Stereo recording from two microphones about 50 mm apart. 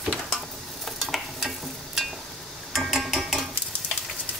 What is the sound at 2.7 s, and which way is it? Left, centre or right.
Mechanisms, centre.